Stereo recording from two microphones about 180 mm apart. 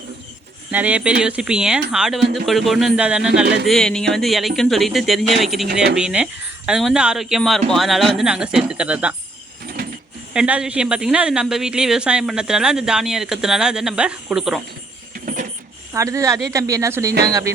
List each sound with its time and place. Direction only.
0.7 s speech: 10° right (ahead or behind)
3.4 s speech: 65° right (ahead or behind)
3.7 s speech: centre (ahead or behind)
10.3 s speech: 5° right (ahead or behind)
15.9 s speech: 15° right (ahead or behind)